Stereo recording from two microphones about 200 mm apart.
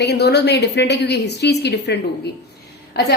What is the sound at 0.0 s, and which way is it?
Speech, 55° left (ahead or behind).